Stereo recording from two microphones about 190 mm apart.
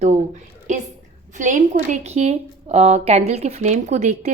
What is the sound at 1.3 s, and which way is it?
A woman's voice, 40° right (ahead or behind).